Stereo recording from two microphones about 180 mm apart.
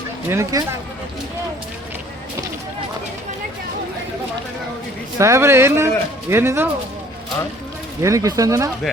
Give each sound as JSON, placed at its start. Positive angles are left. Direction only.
{"t": 0.3, "sound": "speech", "side_deg": -15}
{"t": 5.2, "sound": "speech", "side_deg": -15}
{"t": 8.0, "sound": "speech", "side_deg": -20}